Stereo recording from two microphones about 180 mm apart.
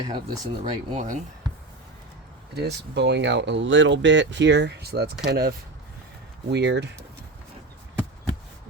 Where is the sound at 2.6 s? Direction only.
70° right (ahead or behind).